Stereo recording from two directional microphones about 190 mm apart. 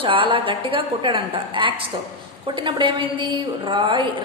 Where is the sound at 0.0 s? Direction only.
25° right (ahead or behind).